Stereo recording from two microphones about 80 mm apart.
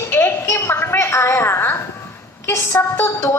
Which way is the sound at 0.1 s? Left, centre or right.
Left.